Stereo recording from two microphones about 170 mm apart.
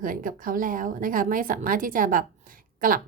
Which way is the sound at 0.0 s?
55° right (ahead or behind).